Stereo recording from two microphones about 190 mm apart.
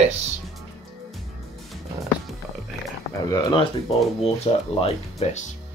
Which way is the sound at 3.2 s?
25° left (ahead or behind).